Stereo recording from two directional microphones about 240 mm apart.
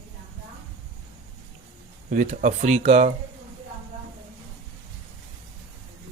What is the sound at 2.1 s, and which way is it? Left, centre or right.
Speech, right.